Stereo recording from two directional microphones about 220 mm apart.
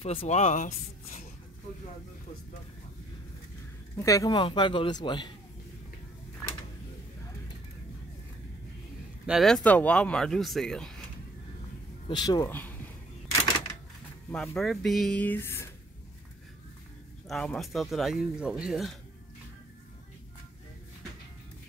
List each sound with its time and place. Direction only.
0.0 s speech: 25° left (ahead or behind)
3.9 s speech: 15° left (ahead or behind)
9.2 s speech: centre (ahead or behind)
12.1 s speech: 20° left (ahead or behind)
14.3 s speech: 5° left (ahead or behind)
17.3 s speech: centre (ahead or behind)